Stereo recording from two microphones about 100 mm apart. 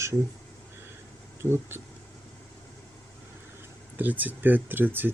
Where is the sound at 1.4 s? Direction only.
25° right (ahead or behind).